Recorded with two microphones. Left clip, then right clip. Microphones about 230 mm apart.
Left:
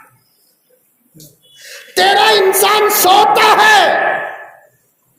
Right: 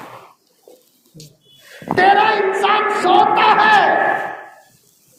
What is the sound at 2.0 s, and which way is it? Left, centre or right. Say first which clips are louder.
Speech: left 3 dB; left.